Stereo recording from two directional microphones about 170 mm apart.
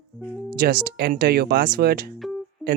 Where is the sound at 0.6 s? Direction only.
60° right (ahead or behind).